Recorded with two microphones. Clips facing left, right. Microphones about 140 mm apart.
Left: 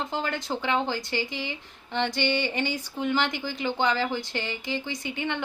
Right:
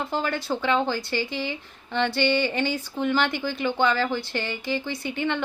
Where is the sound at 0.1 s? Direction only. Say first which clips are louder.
Right 3 dB; 20° left (ahead or behind).